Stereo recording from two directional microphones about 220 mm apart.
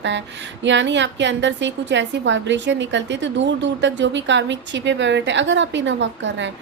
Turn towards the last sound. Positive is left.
turn(degrees=-55)  # may be behind; listen again after turning